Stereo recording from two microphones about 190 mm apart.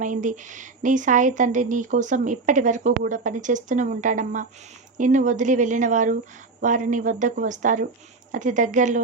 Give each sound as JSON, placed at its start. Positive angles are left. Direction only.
{"t": 0.0, "sound": "a woman's voice", "side_deg": -40}